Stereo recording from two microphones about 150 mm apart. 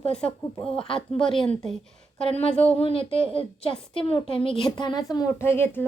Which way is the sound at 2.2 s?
40° left (ahead or behind).